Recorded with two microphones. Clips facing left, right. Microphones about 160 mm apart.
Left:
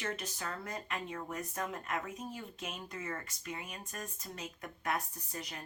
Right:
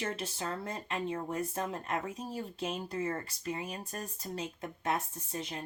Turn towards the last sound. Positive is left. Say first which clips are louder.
# right 5 dB
turn(degrees=-25)  # may be behind; listen again after turning